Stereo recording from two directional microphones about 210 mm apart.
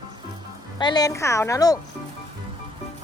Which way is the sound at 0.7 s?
20° left (ahead or behind).